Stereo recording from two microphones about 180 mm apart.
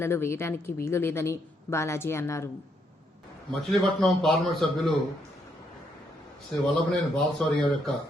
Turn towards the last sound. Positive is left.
turn(degrees=5)  # may be behind; listen again after turning